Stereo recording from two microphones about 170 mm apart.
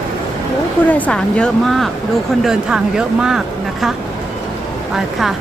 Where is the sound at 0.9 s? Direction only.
10° left (ahead or behind).